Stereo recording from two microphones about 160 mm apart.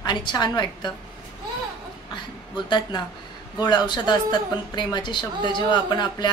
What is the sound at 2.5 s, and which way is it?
A woman's voice, 30° left (ahead or behind).